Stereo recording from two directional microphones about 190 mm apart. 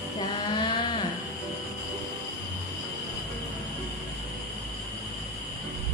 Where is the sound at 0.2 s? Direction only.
25° left (ahead or behind).